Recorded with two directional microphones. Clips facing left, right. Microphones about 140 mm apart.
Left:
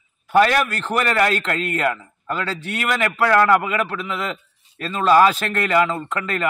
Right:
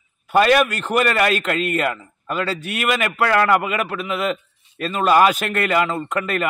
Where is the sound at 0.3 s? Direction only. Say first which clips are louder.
Right 1 dB; 10° right (ahead or behind).